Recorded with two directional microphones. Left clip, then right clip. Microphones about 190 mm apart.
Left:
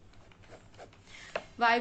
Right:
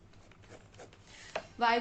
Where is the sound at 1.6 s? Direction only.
25° left (ahead or behind).